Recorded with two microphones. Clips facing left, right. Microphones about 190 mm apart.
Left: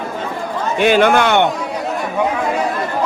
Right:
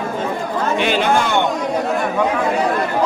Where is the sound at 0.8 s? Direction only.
50° left (ahead or behind); by 1.4 s 70° left (ahead or behind).